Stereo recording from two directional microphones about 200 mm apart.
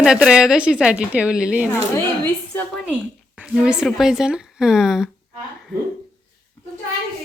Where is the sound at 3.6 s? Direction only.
5° right (ahead or behind).